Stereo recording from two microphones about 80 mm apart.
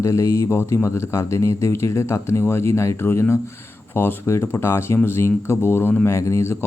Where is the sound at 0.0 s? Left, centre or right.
Left.